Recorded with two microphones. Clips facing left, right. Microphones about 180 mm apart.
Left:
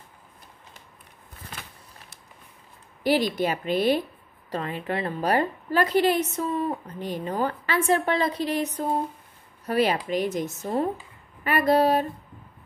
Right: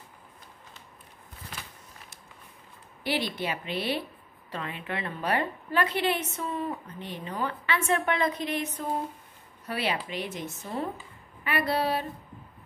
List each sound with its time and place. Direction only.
3.0 s a woman's voice: 40° left (ahead or behind)